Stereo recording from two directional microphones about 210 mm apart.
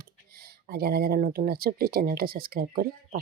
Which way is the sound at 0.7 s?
45° right (ahead or behind).